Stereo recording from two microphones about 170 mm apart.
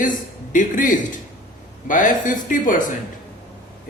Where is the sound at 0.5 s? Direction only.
50° left (ahead or behind).